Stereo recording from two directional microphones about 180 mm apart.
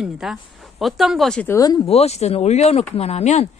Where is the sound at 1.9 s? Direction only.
35° left (ahead or behind).